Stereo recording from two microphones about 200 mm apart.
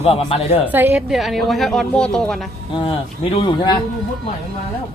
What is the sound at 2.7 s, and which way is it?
Speech, 30° left (ahead or behind).